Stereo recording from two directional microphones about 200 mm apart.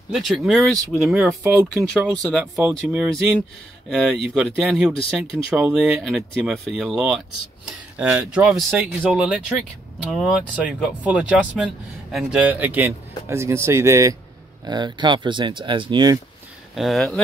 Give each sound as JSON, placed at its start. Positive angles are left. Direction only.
{"t": 0.1, "sound": "speech", "side_deg": 0}
{"t": 1.8, "sound": "speech", "side_deg": 0}
{"t": 16.7, "sound": "speech", "side_deg": 0}